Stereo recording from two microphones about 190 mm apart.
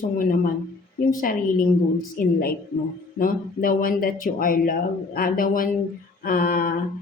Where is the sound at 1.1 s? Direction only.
45° left (ahead or behind).